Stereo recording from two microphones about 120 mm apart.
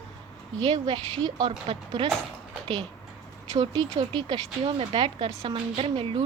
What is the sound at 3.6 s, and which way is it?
Speech, 40° right (ahead or behind).